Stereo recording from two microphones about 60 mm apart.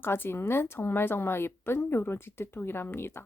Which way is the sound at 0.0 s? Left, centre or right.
Left.